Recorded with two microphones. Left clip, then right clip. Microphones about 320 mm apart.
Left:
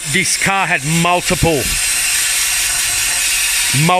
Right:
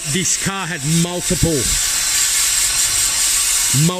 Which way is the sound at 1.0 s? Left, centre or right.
Left.